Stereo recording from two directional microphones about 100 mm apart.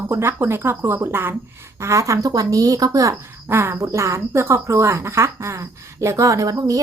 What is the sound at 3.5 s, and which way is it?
Speech, 25° right (ahead or behind).